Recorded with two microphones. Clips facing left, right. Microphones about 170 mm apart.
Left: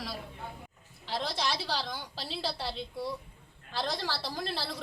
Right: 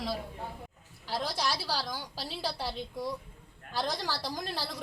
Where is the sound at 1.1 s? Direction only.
10° right (ahead or behind).